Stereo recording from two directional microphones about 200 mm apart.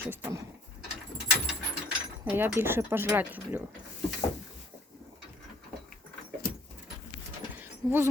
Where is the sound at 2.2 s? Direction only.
10° right (ahead or behind).